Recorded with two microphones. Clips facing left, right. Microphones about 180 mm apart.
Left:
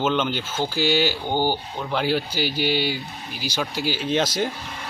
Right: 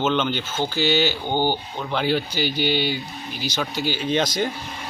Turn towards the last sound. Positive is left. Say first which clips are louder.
# even
turn(degrees=5)  # may be behind; listen again after turning